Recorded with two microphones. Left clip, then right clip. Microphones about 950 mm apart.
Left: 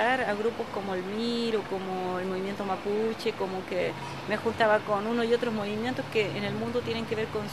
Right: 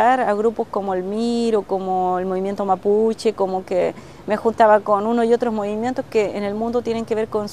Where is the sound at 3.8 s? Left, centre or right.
Right.